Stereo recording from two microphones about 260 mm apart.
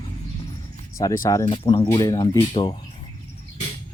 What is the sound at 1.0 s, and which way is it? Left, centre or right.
Speech, centre.